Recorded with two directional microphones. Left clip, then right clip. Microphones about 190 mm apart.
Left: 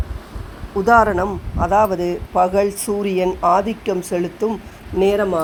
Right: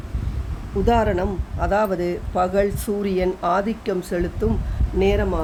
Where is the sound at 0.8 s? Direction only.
20° right (ahead or behind).